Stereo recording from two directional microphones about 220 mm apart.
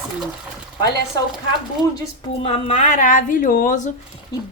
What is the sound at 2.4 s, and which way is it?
A woman's voice, 25° left (ahead or behind).